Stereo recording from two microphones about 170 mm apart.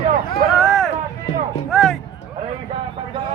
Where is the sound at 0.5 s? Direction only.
Centre (ahead or behind).